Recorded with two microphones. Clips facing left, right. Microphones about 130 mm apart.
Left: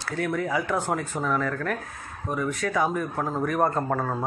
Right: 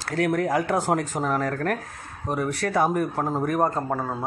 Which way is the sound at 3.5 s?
15° right (ahead or behind).